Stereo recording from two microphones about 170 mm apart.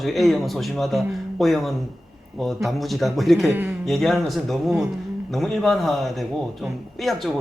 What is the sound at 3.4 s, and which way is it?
Speech, 10° right (ahead or behind).